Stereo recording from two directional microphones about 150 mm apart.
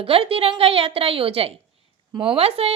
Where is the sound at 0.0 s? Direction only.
40° right (ahead or behind).